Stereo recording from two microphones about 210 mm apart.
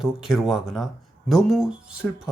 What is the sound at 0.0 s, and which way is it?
Speech, centre (ahead or behind).